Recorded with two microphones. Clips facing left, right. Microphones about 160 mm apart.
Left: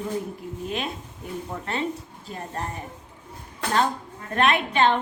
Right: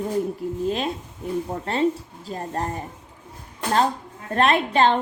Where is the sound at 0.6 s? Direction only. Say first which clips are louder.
Right 3 dB; 35° right (ahead or behind).